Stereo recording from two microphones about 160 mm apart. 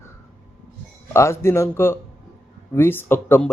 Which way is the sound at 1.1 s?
15° left (ahead or behind).